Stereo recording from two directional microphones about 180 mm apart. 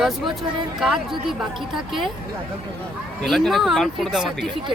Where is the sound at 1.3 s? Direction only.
Centre (ahead or behind).